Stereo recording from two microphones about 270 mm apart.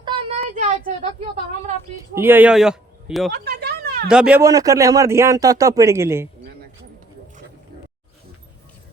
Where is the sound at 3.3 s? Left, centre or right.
Right.